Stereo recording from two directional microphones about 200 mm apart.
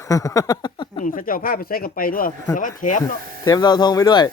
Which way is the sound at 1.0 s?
40° left (ahead or behind).